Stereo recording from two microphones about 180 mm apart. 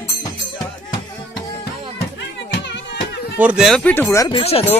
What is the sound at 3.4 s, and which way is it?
Speech, 5° right (ahead or behind).